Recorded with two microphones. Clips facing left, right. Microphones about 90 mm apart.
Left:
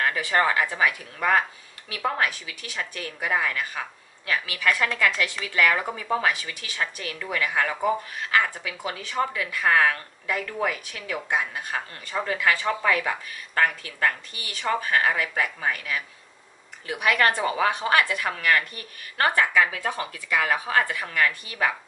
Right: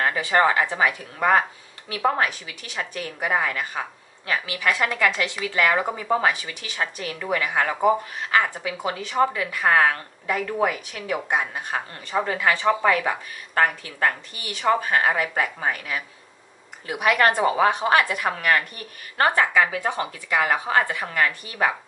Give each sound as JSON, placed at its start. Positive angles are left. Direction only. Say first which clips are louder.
{"t": 0.0, "sound": "speech", "louder": "right 3 dB", "side_deg": -25}
{"t": 17.4, "sound": "speech", "louder": "right 4 dB", "side_deg": -25}